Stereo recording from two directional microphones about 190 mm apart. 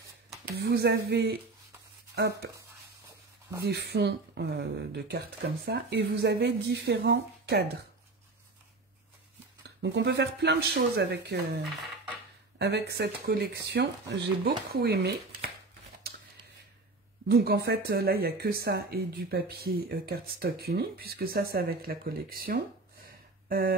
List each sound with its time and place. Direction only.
0.6 s speech: 60° right (ahead or behind)
3.6 s speech: 60° right (ahead or behind)
9.6 s speech: 65° right (ahead or behind)
12.5 s speech: 60° right (ahead or behind)
17.3 s speech: 55° right (ahead or behind)
23.0 s a sound: 50° right (ahead or behind)